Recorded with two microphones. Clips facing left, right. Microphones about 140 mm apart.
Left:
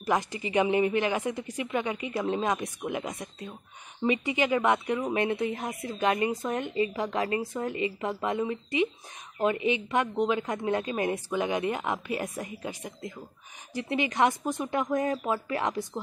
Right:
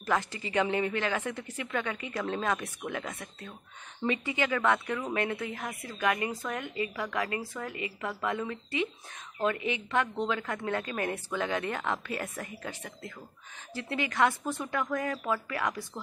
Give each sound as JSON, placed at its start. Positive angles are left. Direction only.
{"t": 0.0, "sound": "speech", "side_deg": 15}